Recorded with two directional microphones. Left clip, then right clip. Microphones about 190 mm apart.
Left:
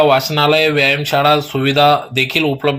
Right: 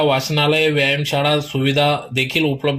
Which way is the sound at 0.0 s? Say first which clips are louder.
Left 5 dB; centre (ahead or behind).